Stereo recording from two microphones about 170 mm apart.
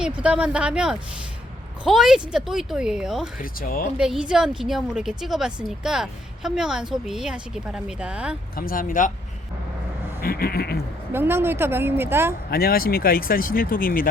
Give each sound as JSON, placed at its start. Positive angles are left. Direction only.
{"t": 0.0, "sound": "a woman's voice", "side_deg": -5}
{"t": 3.4, "sound": "speech", "side_deg": 60}
{"t": 3.9, "sound": "a woman's voice", "side_deg": -5}
{"t": 8.5, "sound": "speech", "side_deg": 55}
{"t": 10.2, "sound": "speech", "side_deg": 60}
{"t": 11.1, "sound": "a woman's voice", "side_deg": -15}
{"t": 12.5, "sound": "speech", "side_deg": 60}